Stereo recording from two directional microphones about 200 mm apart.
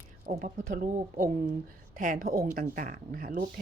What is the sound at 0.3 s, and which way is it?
Speech, 40° right (ahead or behind).